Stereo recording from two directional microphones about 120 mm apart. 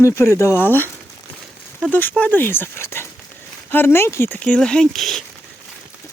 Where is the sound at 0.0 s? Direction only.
20° left (ahead or behind).